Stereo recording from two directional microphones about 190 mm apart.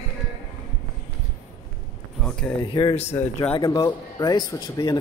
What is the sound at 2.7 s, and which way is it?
Speech, 30° left (ahead or behind).